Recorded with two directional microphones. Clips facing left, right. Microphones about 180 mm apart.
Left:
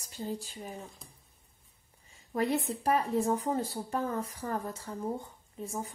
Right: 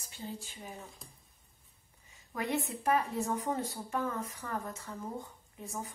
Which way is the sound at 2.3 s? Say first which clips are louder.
Left 5 dB; 35° left (ahead or behind).